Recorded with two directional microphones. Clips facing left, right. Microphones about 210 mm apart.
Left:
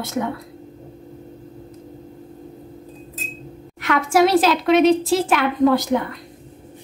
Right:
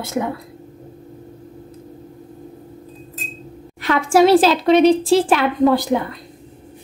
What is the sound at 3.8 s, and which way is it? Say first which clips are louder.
A woman's voice: right 3 dB; 30° right (ahead or behind).